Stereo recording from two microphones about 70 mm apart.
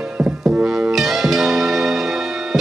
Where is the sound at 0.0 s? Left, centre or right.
Centre.